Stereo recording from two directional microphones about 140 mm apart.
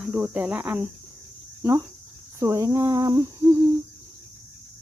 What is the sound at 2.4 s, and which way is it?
Speech, 20° right (ahead or behind).